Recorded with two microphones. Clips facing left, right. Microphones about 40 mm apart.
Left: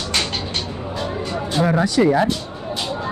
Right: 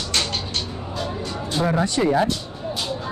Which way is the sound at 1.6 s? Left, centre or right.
Left.